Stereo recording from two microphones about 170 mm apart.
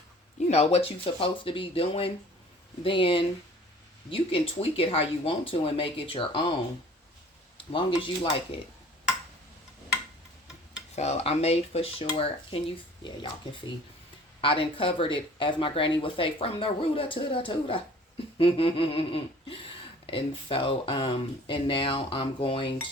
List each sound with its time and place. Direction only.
0.3 s speech: 40° left (ahead or behind)
7.7 s speech: 30° left (ahead or behind)
10.9 s speech: 40° left (ahead or behind)
14.4 s speech: 30° left (ahead or behind)